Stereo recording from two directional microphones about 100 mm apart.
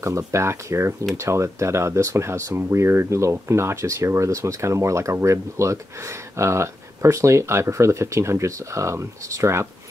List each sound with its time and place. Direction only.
0.0 s speech: 30° right (ahead or behind)